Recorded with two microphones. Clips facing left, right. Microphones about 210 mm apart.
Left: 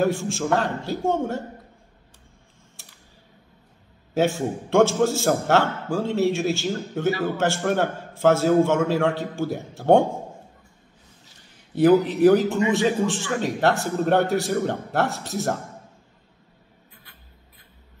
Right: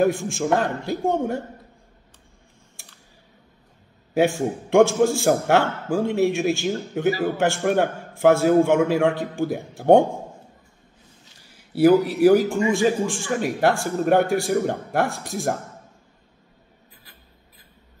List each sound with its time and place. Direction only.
0.0 s a man's voice: 15° right (ahead or behind)
2.8 s typing: 15° right (ahead or behind)
4.1 s a man's voice: 15° right (ahead or behind)
11.7 s a man's voice: 10° right (ahead or behind)